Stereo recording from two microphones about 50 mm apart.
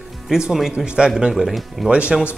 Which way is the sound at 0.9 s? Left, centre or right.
Centre.